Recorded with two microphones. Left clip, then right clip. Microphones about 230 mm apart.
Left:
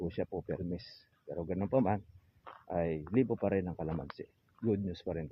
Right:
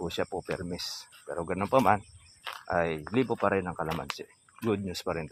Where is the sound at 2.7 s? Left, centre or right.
Right.